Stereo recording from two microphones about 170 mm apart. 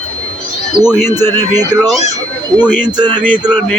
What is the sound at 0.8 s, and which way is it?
Speech, 5° right (ahead or behind).